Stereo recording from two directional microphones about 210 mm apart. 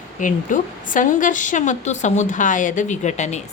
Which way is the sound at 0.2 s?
40° left (ahead or behind).